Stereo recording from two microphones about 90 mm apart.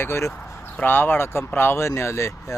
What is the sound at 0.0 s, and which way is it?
Speech, 30° left (ahead or behind).